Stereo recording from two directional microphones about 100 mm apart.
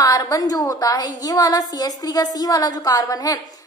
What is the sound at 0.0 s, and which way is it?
A woman's voice, 35° left (ahead or behind).